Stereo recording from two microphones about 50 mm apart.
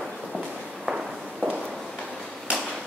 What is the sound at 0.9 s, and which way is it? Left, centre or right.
Walk, centre.